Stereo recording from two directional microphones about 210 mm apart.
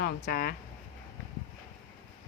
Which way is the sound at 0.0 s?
45° left (ahead or behind).